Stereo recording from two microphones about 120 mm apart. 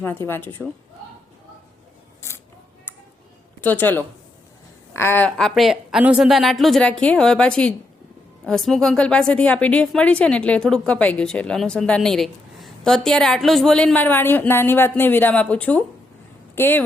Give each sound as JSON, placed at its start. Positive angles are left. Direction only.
{"t": 0.0, "sound": "a woman's voice", "side_deg": 15}
{"t": 3.6, "sound": "a woman's voice", "side_deg": 15}
{"t": 5.4, "sound": "a woman's voice", "side_deg": 0}